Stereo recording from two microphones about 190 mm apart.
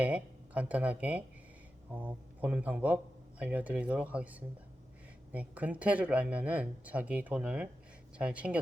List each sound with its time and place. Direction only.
0.0 s speech: 5° right (ahead or behind)